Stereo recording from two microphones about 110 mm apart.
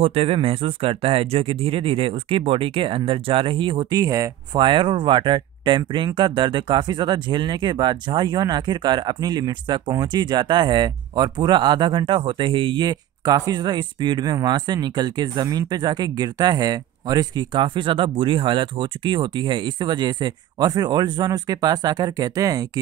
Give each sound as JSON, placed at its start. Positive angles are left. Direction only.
{"t": 0.0, "sound": "speech", "side_deg": -65}
{"t": 4.0, "sound": "speech", "side_deg": -30}
{"t": 4.6, "sound": "speech", "side_deg": -50}